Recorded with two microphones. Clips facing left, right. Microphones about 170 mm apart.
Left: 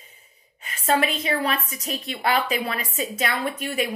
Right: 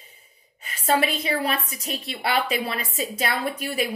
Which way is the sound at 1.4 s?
35° right (ahead or behind).